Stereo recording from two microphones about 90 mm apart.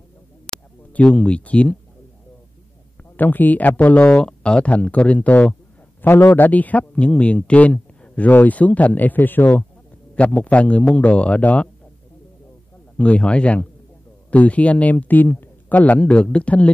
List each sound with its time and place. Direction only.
0.9 s speech: 10° left (ahead or behind)
3.2 s speech: 20° left (ahead or behind)
12.9 s speech: 15° left (ahead or behind)